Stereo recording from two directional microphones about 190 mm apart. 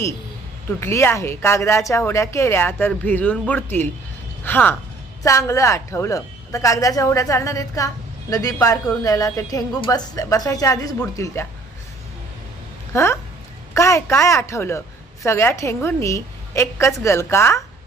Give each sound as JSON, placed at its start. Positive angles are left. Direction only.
{"t": 0.8, "sound": "a woman's voice", "side_deg": 15}
{"t": 12.9, "sound": "a woman's voice", "side_deg": 15}